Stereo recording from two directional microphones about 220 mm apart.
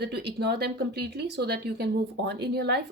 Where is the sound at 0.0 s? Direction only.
50° right (ahead or behind).